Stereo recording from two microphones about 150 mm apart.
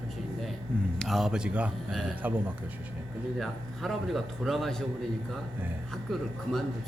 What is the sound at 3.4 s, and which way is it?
A man's voice, centre (ahead or behind).